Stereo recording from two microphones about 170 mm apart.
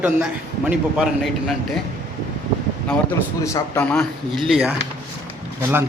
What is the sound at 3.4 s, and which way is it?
Speech, 20° left (ahead or behind).